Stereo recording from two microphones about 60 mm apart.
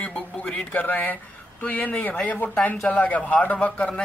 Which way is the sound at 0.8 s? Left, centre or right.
Left.